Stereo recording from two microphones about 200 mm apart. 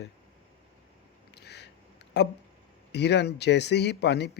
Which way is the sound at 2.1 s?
60° left (ahead or behind).